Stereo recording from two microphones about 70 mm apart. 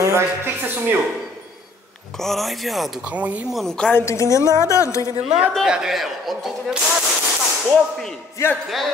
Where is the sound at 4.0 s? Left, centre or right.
Left.